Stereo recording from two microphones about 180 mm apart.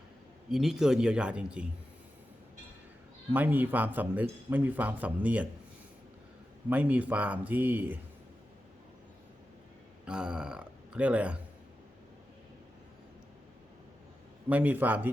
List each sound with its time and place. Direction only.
0.5 s speech: centre (ahead or behind)
3.3 s speech: 10° right (ahead or behind)
6.7 s speech: 10° right (ahead or behind)
10.1 s speech: 5° right (ahead or behind)
14.5 s speech: 10° right (ahead or behind)